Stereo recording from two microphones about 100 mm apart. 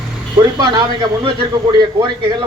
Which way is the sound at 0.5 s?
45° right (ahead or behind).